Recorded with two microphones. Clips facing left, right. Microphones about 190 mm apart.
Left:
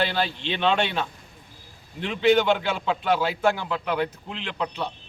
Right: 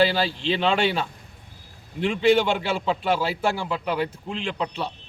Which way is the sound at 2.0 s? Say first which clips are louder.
Right 1 dB; 10° right (ahead or behind).